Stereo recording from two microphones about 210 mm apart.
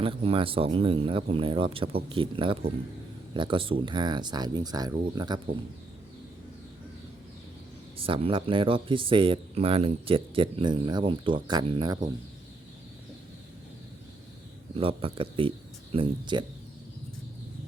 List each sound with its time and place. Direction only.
0.0 s speech: 25° right (ahead or behind)
8.0 s speech: 25° right (ahead or behind)
14.8 s speech: 25° right (ahead or behind)